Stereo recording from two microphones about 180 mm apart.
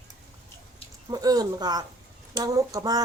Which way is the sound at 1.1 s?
20° right (ahead or behind).